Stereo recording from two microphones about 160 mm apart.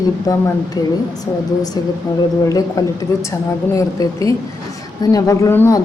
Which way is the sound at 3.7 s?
20° left (ahead or behind).